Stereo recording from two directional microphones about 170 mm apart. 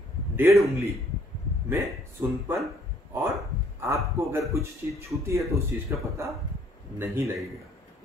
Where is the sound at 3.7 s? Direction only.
15° right (ahead or behind).